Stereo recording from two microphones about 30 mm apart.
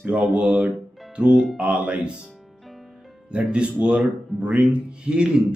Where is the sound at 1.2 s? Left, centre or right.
Right.